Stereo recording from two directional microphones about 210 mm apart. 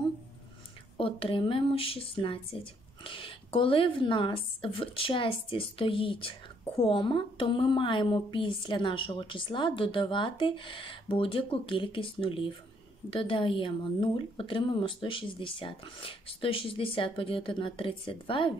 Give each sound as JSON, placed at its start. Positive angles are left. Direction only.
{"t": 0.9, "sound": "a woman's voice", "side_deg": 25}